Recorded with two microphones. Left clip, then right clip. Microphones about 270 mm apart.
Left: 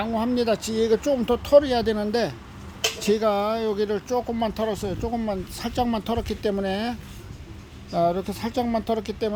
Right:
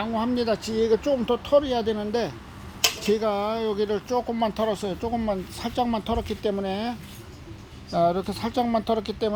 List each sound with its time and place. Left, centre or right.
0.0 s speech: centre
7.9 s speech: centre